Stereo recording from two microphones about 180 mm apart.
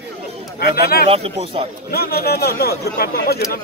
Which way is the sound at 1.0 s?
35° right (ahead or behind).